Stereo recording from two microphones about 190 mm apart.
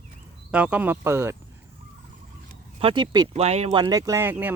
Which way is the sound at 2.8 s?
25° right (ahead or behind).